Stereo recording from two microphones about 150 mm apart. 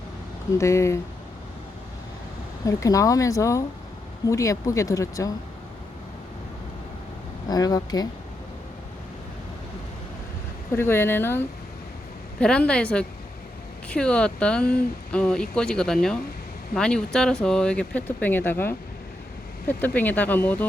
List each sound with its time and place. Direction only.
0.6 s speech: 20° left (ahead or behind)
2.6 s speech: 20° left (ahead or behind)
7.4 s speech: 25° left (ahead or behind)
10.7 s speech: 15° left (ahead or behind)